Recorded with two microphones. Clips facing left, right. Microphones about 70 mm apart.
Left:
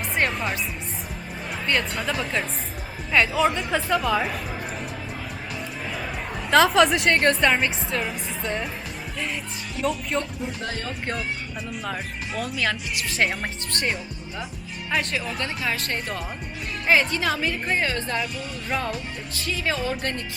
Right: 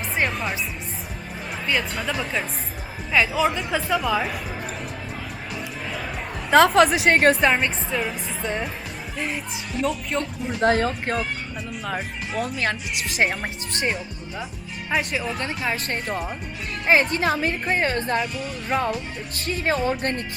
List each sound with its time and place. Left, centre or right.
0.2 s music: centre
1.6 s a woman's voice: centre
6.5 s a woman's voice: centre
10.8 s speech: right
12.3 s a woman's voice: right
13.1 s a woman's voice: centre; by 18.2 s right
19.4 s a woman's voice: right